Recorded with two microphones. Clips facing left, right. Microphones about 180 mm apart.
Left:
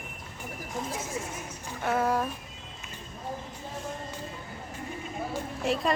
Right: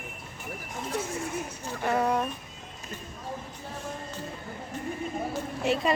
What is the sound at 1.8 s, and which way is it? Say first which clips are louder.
Speech: right 1 dB; centre (ahead or behind).